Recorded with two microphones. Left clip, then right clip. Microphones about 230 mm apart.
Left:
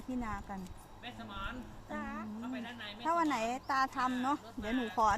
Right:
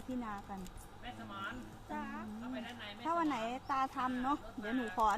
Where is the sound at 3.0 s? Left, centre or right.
Left.